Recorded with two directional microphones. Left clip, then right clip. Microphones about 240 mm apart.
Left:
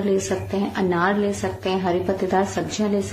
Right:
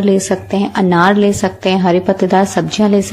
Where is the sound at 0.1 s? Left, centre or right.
Right.